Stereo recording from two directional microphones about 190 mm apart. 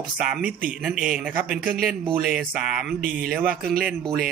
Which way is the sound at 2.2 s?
5° right (ahead or behind).